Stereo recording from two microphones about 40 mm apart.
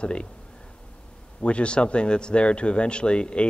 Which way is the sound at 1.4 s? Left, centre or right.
Left.